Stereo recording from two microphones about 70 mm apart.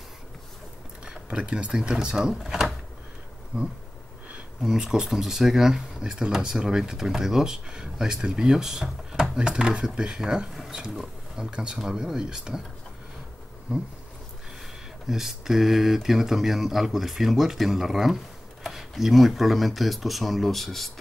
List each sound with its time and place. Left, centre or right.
1.0 s speech: centre
3.5 s bee: centre
4.6 s speech: centre
15.0 s speech: centre